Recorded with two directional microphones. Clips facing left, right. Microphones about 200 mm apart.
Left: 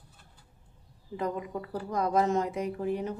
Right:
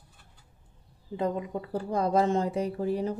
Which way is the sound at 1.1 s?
25° right (ahead or behind).